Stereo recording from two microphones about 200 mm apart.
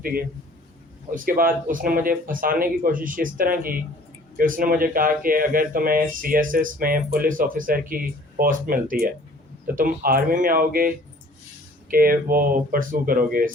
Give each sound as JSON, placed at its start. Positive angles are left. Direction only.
{"t": 0.0, "sound": "speech", "side_deg": -45}